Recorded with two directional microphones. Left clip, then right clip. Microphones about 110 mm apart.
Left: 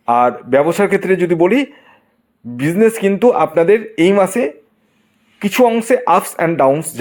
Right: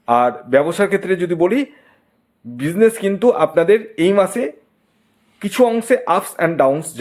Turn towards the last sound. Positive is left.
turn(degrees=35)  # may be behind; listen again after turning